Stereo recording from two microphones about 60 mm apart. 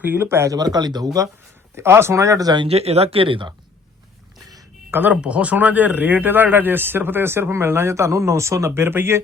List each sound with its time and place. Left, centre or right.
0.0 s speech: right
0.3 s speech: right
0.5 s speech: right
1.7 s speech: right
2.1 s speech: right
4.9 s speech: right
5.2 s speech: right
8.7 s speech: right